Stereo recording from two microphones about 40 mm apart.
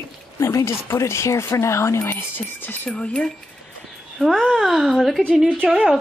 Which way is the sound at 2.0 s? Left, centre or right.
Left.